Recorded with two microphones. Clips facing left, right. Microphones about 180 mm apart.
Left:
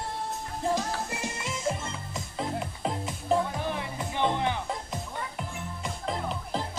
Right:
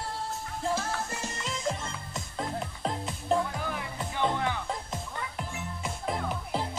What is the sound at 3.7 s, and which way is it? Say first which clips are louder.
Music: left 3 dB; 25° left (ahead or behind).